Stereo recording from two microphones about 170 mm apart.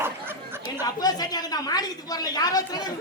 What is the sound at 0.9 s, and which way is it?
A woman's voice, 25° left (ahead or behind).